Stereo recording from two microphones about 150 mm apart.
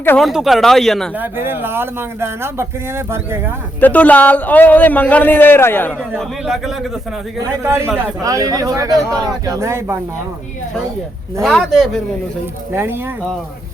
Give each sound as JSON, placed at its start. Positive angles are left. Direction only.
{"t": 0.2, "sound": "speech", "side_deg": 0}
{"t": 1.2, "sound": "speech", "side_deg": -15}
{"t": 3.8, "sound": "a man's voice", "side_deg": 10}
{"t": 6.4, "sound": "speech", "side_deg": 0}
{"t": 7.6, "sound": "a man's voice", "side_deg": -15}
{"t": 11.4, "sound": "speech", "side_deg": 0}
{"t": 12.7, "sound": "speech", "side_deg": -15}